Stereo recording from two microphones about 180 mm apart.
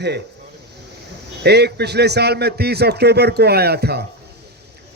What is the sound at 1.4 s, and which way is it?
A man's voice, 65° right (ahead or behind).